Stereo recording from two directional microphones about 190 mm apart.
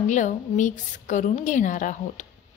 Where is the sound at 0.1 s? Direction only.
40° left (ahead or behind).